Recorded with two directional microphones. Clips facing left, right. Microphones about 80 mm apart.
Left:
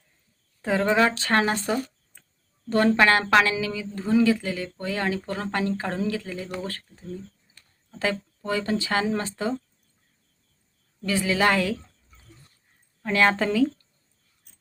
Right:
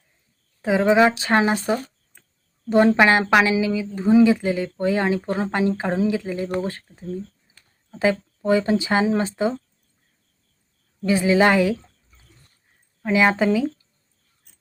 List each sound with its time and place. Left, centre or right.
0.6 s speech: centre
11.0 s speech: right
13.0 s a woman's voice: centre